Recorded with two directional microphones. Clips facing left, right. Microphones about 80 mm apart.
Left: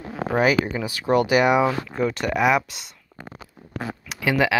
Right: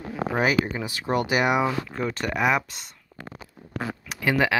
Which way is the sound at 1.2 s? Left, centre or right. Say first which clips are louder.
Left 4 dB; centre.